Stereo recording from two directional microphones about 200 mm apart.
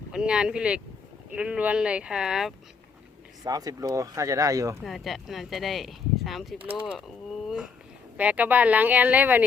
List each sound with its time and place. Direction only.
0.1 s speech: 5° right (ahead or behind)
3.4 s speech: 20° right (ahead or behind)
4.8 s speech: centre (ahead or behind)
7.4 s a sound: 5° right (ahead or behind)
8.1 s speech: 5° right (ahead or behind)